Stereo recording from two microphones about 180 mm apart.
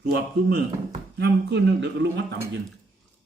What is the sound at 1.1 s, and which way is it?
Speech, 70° right (ahead or behind).